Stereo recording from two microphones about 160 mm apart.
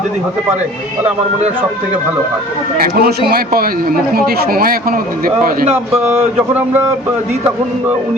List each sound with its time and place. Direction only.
2.7 s a man's voice: 65° right (ahead or behind)
6.1 s speech: 15° right (ahead or behind)